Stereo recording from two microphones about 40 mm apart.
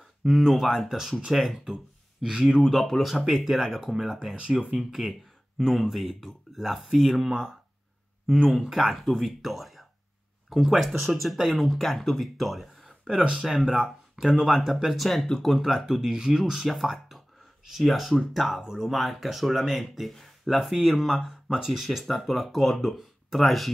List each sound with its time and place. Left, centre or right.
0.2 s speech: centre
2.6 s speech: centre
4.4 s speech: right
4.7 s speech: centre
7.2 s speech: centre
8.5 s speech: centre
12.8 s a sound: centre
13.2 s speech: right
13.5 s speech: centre
15.0 s speech: centre
16.6 s speech: centre